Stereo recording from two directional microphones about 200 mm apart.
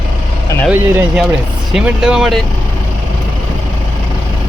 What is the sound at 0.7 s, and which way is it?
Speech, 10° right (ahead or behind).